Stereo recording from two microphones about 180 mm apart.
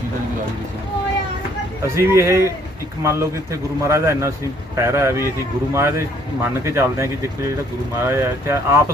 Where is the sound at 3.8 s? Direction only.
15° right (ahead or behind).